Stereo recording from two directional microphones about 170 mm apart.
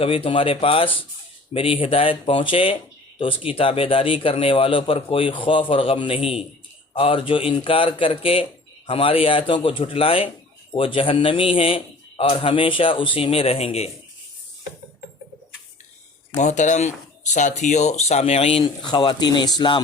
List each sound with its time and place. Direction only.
0.0 s a man's voice: 30° left (ahead or behind)
16.3 s a man's voice: 45° left (ahead or behind); by 19.8 s 25° left (ahead or behind)